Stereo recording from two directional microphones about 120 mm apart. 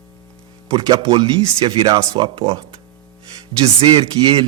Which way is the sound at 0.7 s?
35° right (ahead or behind).